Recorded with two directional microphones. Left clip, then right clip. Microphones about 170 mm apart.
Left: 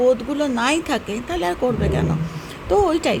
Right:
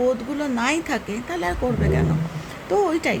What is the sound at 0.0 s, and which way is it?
A woman's voice, 15° left (ahead or behind).